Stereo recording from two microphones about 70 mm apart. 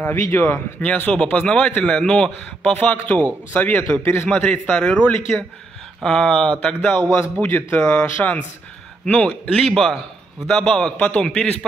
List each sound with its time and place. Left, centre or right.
0.0 s a man's voice: left
0.7 s a man's voice: left
4.0 s a man's voice: left
4.3 s a man's voice: centre
6.6 s speech: left
7.1 s a man's voice: left
9.6 s a man's voice: centre
11.0 s speech: centre